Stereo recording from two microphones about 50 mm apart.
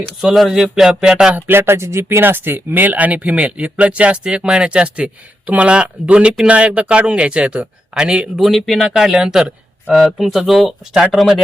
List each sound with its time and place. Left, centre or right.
0.2 s speech: centre
0.5 s music: centre
1.5 s speech: right; by 8.3 s centre
8.5 s speech: centre
9.9 s speech: centre